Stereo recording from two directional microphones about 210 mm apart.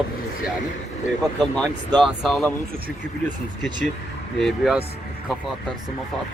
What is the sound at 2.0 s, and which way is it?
Speech, centre (ahead or behind).